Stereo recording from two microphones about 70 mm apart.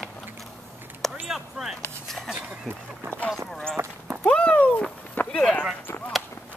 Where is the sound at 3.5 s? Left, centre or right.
Centre.